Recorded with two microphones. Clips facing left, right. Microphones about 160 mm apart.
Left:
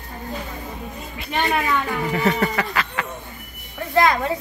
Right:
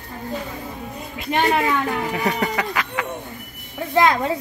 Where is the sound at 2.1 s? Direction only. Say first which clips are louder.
Left 5 dB; 10° right (ahead or behind).